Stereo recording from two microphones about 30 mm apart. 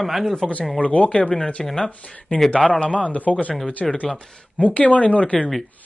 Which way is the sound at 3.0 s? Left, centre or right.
Left.